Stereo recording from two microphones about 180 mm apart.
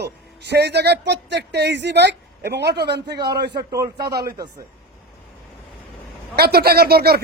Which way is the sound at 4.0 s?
60° right (ahead or behind).